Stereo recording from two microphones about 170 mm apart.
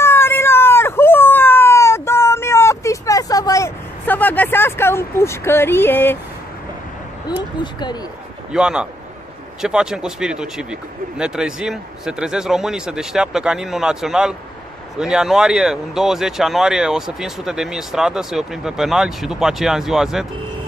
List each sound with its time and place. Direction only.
0.0 s a sound: 15° left (ahead or behind)
7.6 s speech: 25° left (ahead or behind)
8.5 s speech: 5° right (ahead or behind)